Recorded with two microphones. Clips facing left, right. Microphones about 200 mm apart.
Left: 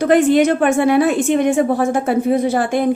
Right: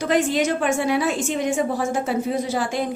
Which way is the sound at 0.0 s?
55° left (ahead or behind).